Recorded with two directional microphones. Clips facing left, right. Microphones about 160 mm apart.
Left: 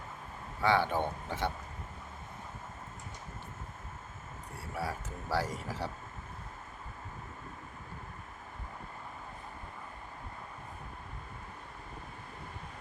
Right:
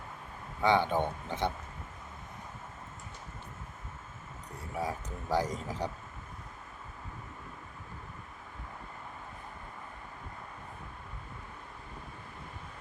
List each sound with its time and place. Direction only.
0.6 s speech: 20° right (ahead or behind)
4.7 s speech: 20° right (ahead or behind)